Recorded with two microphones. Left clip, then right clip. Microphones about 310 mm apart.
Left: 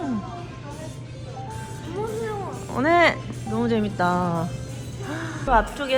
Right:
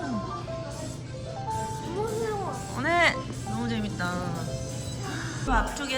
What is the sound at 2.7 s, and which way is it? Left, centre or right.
A woman's voice, centre.